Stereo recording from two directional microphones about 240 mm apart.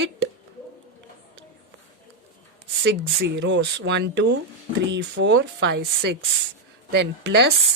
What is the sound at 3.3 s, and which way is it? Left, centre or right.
Speech, right.